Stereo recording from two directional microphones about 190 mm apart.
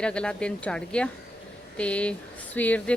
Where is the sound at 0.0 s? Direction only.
5° left (ahead or behind).